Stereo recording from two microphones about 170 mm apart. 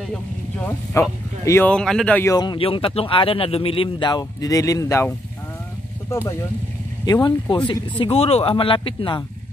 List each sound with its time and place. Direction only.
1.0 s speech: 20° left (ahead or behind)
1.7 s speech: 5° left (ahead or behind)
2.3 s speech: 30° left (ahead or behind)
7.1 s speech: 25° left (ahead or behind)